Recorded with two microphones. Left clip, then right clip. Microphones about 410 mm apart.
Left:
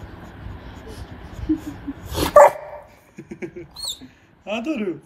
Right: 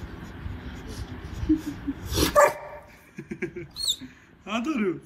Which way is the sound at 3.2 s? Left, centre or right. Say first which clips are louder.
Even; centre.